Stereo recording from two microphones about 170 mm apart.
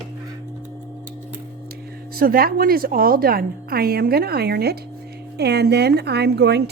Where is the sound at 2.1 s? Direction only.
60° right (ahead or behind).